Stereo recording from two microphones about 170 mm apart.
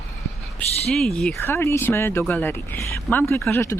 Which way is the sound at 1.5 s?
15° left (ahead or behind).